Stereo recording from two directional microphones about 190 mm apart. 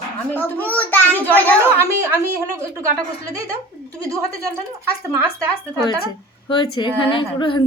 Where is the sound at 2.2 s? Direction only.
15° right (ahead or behind).